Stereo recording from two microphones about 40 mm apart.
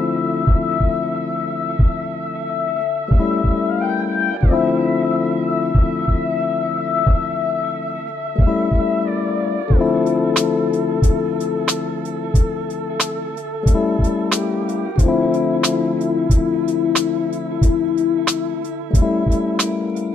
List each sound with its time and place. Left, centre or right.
9.8 s music: left